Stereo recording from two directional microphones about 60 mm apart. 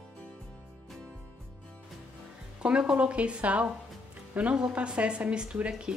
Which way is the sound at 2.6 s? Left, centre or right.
Centre.